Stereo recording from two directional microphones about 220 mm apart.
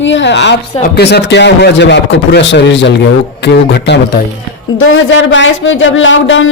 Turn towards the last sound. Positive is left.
turn(degrees=60)  # may be behind; listen again after turning